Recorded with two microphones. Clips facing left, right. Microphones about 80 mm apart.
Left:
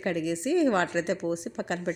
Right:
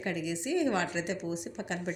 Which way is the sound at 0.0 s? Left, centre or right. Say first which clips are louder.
Left 5 dB; left.